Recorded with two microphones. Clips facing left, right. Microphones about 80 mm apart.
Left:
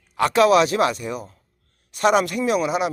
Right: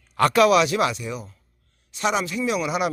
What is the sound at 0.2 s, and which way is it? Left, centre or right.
Speech, centre.